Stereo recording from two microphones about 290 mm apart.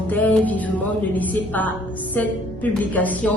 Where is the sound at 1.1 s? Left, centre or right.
Centre.